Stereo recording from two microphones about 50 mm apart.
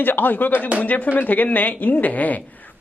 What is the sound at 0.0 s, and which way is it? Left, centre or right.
A man's voice, left.